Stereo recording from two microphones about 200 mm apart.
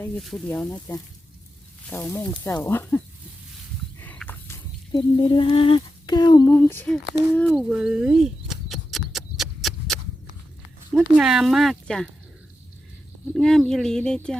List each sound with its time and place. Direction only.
0.0 s speech: centre (ahead or behind)
4.0 s speech: 10° left (ahead or behind)
7.7 s horse: 5° right (ahead or behind)
10.9 s speech: centre (ahead or behind)
13.3 s speech: 5° left (ahead or behind)